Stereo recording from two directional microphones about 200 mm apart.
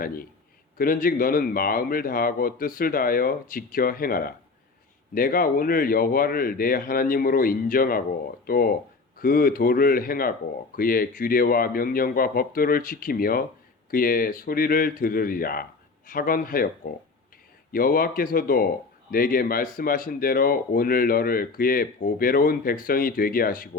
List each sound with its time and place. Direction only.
0.8 s speech: 45° left (ahead or behind)